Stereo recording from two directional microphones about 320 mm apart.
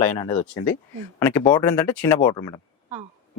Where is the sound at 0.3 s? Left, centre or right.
Centre.